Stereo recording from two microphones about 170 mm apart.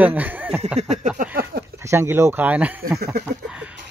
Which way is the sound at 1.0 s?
50° right (ahead or behind).